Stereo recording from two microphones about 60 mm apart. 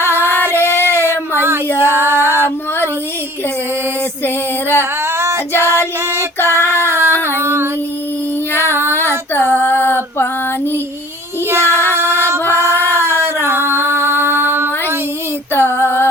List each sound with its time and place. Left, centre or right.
0.2 s singing: left
0.5 s a sound: left
0.8 s child singing: right
1.8 s female singing: right
4.8 s female singing: right
5.5 s music: left
6.5 s child singing: left
6.8 s a sound: right
7.3 s female singing: right
8.9 s female singing: left
11.5 s child singing: right
11.9 s music: right
12.8 s a sound: right
15.5 s female singing: left